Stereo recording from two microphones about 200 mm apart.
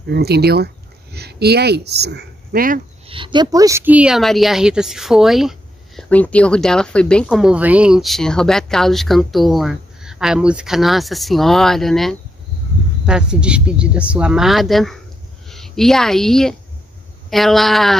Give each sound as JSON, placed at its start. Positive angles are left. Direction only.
{"t": 0.0, "sound": "speech", "side_deg": -55}
{"t": 3.1, "sound": "a woman's voice", "side_deg": -25}